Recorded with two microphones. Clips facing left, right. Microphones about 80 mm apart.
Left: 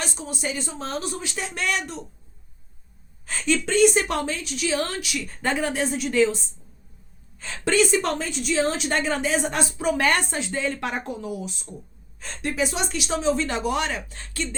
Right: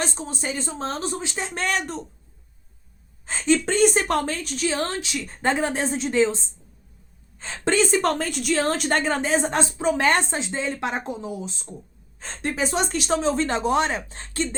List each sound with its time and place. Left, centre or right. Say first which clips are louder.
0.0 s a woman's voice: right 2 dB; right
3.2 s a woman's voice: right 3 dB; right
8.2 s a woman's voice: even; right